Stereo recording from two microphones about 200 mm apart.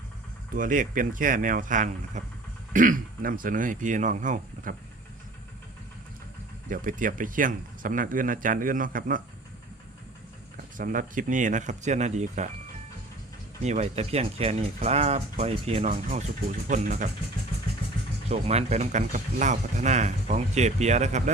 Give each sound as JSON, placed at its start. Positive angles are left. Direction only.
{"t": 0.5, "sound": "speech", "side_deg": -40}
{"t": 6.7, "sound": "speech", "side_deg": -40}
{"t": 10.8, "sound": "speech", "side_deg": -40}
{"t": 13.6, "sound": "speech", "side_deg": -35}
{"t": 18.3, "sound": "speech", "side_deg": -30}